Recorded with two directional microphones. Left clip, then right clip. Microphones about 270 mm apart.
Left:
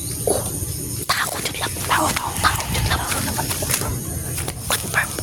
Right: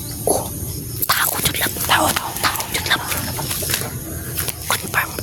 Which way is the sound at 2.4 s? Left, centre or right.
Centre.